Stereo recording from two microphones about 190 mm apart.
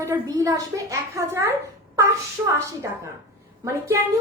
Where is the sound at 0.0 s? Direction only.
15° right (ahead or behind).